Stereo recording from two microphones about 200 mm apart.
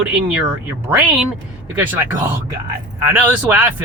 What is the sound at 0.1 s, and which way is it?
Speech, 5° right (ahead or behind).